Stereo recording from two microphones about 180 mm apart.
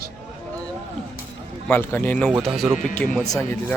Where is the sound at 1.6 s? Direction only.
10° left (ahead or behind).